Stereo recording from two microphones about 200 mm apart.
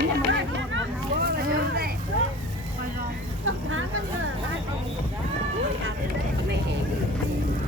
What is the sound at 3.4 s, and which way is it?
Vehicle, 90° right.